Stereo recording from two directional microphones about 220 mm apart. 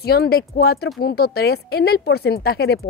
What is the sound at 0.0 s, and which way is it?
A woman's voice, 45° left (ahead or behind).